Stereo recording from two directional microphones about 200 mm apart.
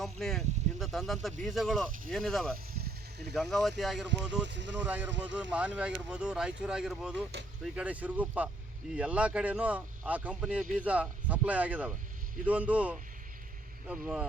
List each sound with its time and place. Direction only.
0.0 s speech: centre (ahead or behind)
2.7 s a sound: 55° right (ahead or behind)
3.3 s speech: centre (ahead or behind)
4.4 s speech: 60° right (ahead or behind)
4.8 s speech: 10° right (ahead or behind)